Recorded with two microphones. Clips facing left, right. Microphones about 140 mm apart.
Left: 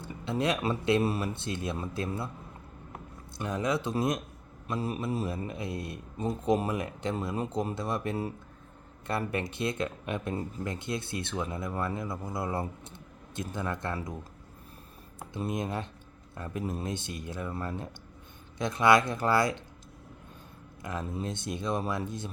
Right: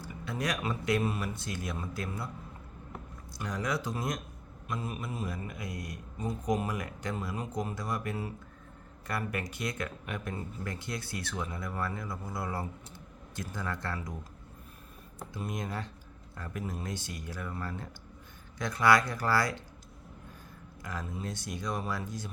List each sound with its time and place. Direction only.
0.0 s speech: 25° left (ahead or behind)
3.3 s speech: 25° left (ahead or behind)
15.3 s speech: 25° left (ahead or behind)
20.8 s speech: 20° left (ahead or behind)